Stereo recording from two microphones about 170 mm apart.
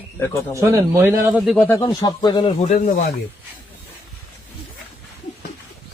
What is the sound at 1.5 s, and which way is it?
Speech, 15° left (ahead or behind).